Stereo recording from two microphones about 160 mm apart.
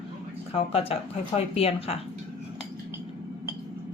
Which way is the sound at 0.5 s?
35° left (ahead or behind).